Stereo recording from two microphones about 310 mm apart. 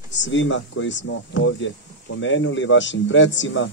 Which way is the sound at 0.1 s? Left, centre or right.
Left.